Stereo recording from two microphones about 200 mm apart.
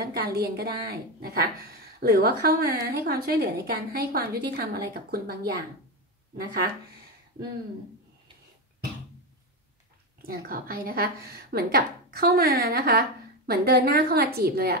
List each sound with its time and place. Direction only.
0.0 s a woman's voice: 50° right (ahead or behind)
10.2 s a woman's voice: 45° right (ahead or behind)